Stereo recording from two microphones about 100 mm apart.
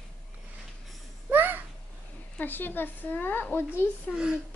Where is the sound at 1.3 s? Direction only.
20° right (ahead or behind).